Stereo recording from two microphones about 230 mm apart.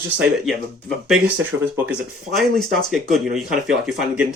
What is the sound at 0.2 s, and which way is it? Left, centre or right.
Speech, centre.